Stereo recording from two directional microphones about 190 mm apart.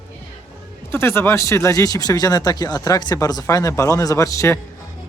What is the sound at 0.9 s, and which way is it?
Speech, 15° left (ahead or behind).